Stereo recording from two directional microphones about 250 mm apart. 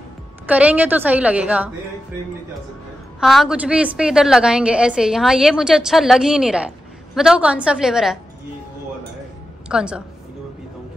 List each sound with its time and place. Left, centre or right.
0.5 s a woman's voice: centre
3.2 s a woman's voice: centre
9.7 s a woman's voice: centre